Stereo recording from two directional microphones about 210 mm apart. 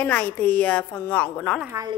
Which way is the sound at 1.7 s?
15° right (ahead or behind).